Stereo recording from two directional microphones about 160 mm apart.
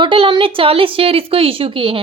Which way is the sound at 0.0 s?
30° right (ahead or behind).